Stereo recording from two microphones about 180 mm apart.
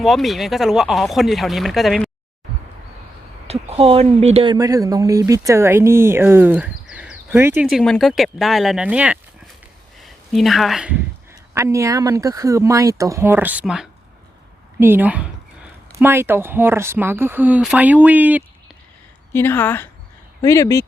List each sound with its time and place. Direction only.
0.0 s speech: centre (ahead or behind)
3.4 s speech: 35° right (ahead or behind)
4.5 s speech: 20° right (ahead or behind)
10.0 s a sound: centre (ahead or behind)
11.5 s speech: 15° right (ahead or behind)
19.3 s a woman's voice: 10° left (ahead or behind)